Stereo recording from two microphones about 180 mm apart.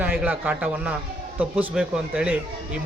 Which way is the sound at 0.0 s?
10° right (ahead or behind).